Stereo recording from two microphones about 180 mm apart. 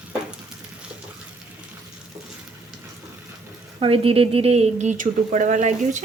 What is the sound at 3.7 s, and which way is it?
Speech, 30° right (ahead or behind).